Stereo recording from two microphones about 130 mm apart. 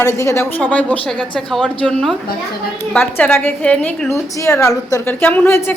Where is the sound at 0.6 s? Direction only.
10° left (ahead or behind).